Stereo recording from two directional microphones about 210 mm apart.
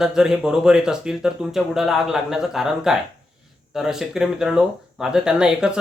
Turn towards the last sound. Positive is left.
turn(degrees=-5)  # may be behind; listen again after turning